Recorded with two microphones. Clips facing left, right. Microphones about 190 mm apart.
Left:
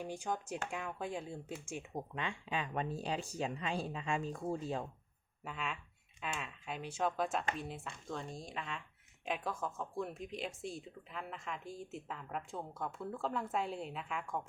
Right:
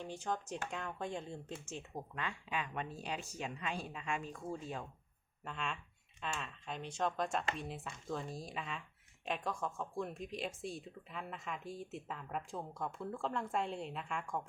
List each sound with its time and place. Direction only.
0.0 s speech: 10° left (ahead or behind); by 4.9 s 35° left (ahead or behind)
5.5 s speech: 5° left (ahead or behind)